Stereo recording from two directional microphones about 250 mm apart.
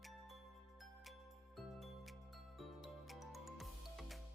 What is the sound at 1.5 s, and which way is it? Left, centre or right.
Music, centre.